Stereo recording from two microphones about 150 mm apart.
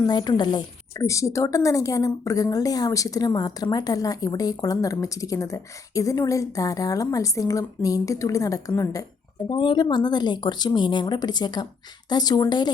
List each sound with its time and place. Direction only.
0.0 s a woman's voice: 30° left (ahead or behind)